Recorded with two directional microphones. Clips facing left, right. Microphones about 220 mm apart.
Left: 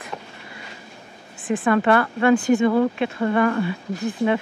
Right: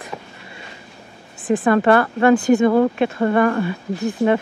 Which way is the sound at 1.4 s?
40° right (ahead or behind).